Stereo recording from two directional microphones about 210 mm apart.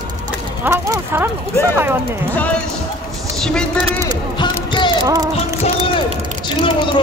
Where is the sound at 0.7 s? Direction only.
15° right (ahead or behind).